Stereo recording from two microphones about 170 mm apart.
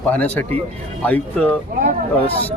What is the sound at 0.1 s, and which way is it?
Speech, 10° left (ahead or behind).